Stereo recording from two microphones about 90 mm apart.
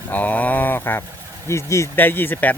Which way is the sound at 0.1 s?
15° left (ahead or behind).